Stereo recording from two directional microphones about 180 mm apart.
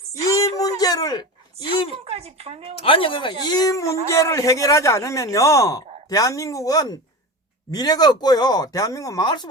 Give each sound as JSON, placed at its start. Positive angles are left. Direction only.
{"t": 0.1, "sound": "a sound", "side_deg": 20}
{"t": 1.9, "sound": "speech", "side_deg": -35}
{"t": 2.8, "sound": "speech", "side_deg": 30}